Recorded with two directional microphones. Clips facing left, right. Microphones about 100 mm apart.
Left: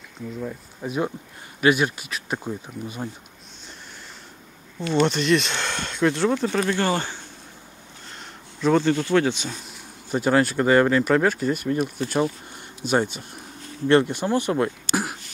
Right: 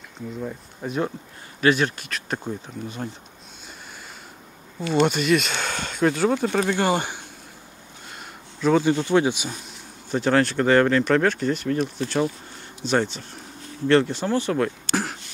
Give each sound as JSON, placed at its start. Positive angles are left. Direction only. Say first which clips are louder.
{"t": 0.4, "sound": "speech", "louder": "even", "side_deg": 0}
{"t": 5.0, "sound": "speech", "louder": "even", "side_deg": -5}
{"t": 8.5, "sound": "speech", "louder": "even", "side_deg": 0}
{"t": 8.8, "sound": "speech", "louder": "right 1 dB", "side_deg": -15}
{"t": 10.1, "sound": "speech", "louder": "even", "side_deg": 5}